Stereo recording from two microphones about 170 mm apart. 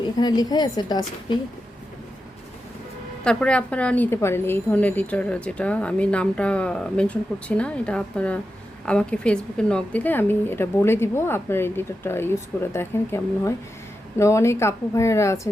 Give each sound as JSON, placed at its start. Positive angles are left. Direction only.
{"t": 0.0, "sound": "a woman's voice", "side_deg": 25}
{"t": 3.2, "sound": "a woman's voice", "side_deg": 5}